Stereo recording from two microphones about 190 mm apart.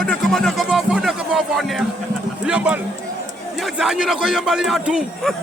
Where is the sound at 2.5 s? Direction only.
5° right (ahead or behind).